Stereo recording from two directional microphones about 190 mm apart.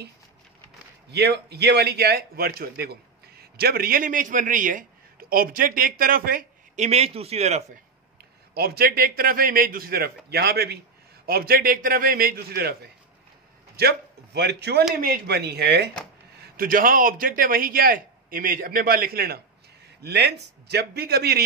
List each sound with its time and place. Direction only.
1.1 s a man's voice: 60° right (ahead or behind)
6.9 s speech: 30° right (ahead or behind)
8.5 s a man's voice: 55° right (ahead or behind)
16.3 s a man's voice: 50° right (ahead or behind)